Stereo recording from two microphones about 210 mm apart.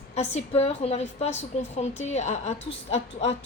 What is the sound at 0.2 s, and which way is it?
A woman's voice, 30° left (ahead or behind).